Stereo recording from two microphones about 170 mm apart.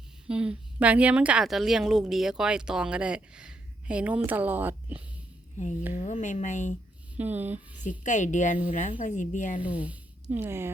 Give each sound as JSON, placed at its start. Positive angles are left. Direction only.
{"t": 0.3, "sound": "a woman's voice", "side_deg": -5}
{"t": 5.9, "sound": "speech", "side_deg": 45}
{"t": 7.2, "sound": "speech", "side_deg": -10}
{"t": 7.9, "sound": "speech", "side_deg": 45}
{"t": 9.6, "sound": "a woman's voice", "side_deg": -10}